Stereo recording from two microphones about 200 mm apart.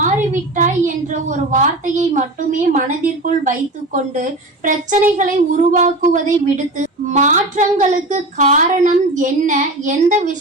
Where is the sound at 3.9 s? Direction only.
40° right (ahead or behind).